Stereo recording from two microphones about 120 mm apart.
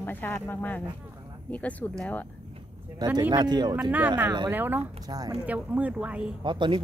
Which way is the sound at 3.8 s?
15° right (ahead or behind).